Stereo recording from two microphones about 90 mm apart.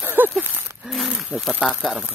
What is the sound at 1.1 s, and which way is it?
Speech, 10° right (ahead or behind).